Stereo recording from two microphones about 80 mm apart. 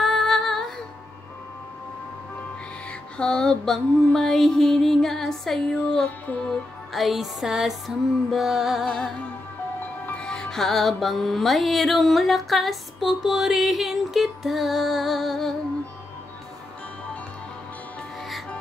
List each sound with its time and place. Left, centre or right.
0.0 s female singing: centre
3.2 s music: centre
6.0 s music: centre
6.9 s music: centre
10.2 s music: centre